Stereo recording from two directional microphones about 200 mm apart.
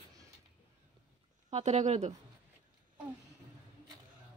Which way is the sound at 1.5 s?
35° right (ahead or behind).